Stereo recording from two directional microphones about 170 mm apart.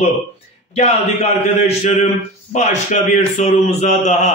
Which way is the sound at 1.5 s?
40° left (ahead or behind).